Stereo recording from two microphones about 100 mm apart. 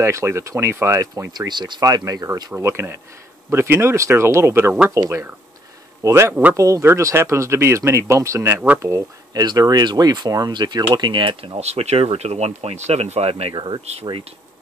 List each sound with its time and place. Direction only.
0.0 s speech: 30° right (ahead or behind)
1.5 s speech: 45° right (ahead or behind)
2.6 s speech: 25° right (ahead or behind); by 13.6 s 80° right